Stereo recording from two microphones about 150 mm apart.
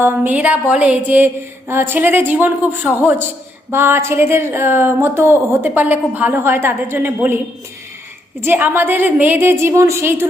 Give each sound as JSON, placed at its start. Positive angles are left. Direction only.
{"t": 0.0, "sound": "speech", "side_deg": -10}